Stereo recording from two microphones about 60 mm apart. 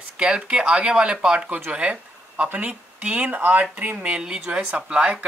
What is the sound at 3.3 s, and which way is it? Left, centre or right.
Speech, right.